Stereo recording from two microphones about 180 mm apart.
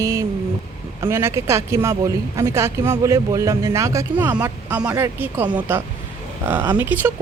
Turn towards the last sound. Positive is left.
turn(degrees=-10)  # may be behind; listen again after turning